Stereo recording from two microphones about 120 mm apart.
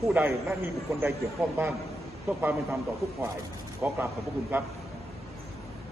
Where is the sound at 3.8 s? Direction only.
10° right (ahead or behind).